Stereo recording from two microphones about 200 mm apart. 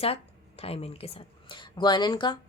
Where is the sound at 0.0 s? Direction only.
30° left (ahead or behind).